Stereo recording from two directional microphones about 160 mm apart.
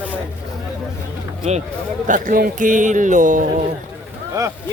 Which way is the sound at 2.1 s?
55° right (ahead or behind).